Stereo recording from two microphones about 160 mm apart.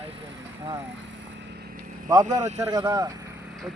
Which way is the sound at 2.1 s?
25° right (ahead or behind).